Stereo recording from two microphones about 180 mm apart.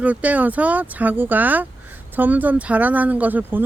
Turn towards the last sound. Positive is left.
turn(degrees=-10)  # may be behind; listen again after turning